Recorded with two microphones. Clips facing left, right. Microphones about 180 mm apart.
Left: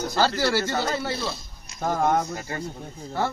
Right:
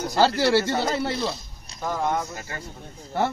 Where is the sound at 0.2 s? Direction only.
25° right (ahead or behind).